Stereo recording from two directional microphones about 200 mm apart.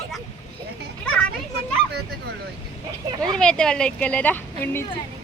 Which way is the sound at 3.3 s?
5° left (ahead or behind).